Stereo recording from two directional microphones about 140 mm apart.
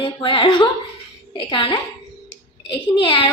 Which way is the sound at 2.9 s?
35° left (ahead or behind).